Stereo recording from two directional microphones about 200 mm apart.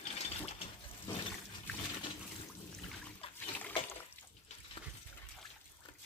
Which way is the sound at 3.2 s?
30° left (ahead or behind).